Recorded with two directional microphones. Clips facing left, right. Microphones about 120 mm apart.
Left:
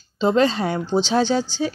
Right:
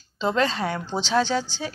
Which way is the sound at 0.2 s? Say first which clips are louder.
Left 5 dB; 25° left (ahead or behind).